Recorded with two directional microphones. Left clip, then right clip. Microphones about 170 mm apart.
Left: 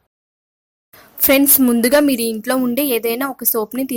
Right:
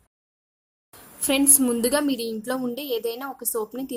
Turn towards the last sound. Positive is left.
turn(degrees=45)  # may be behind; listen again after turning